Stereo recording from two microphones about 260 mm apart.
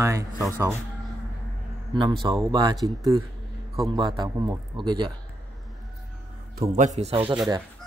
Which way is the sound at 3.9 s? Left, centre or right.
Centre.